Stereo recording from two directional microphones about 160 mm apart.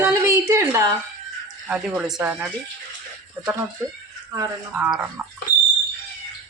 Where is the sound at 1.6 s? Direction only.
5° right (ahead or behind).